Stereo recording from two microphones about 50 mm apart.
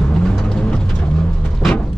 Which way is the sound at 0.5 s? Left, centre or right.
Centre.